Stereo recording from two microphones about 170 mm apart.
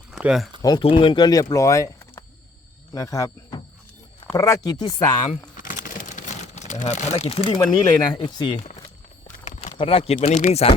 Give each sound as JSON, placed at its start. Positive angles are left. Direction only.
{"t": 0.1, "sound": "speech", "side_deg": -5}
{"t": 0.6, "sound": "speech", "side_deg": 30}
{"t": 5.2, "sound": "speech", "side_deg": 50}
{"t": 8.5, "sound": "speech", "side_deg": 40}
{"t": 9.2, "sound": "a sound", "side_deg": 45}
{"t": 9.7, "sound": "speech", "side_deg": 35}